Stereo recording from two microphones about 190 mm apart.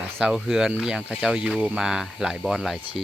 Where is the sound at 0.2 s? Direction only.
5° right (ahead or behind).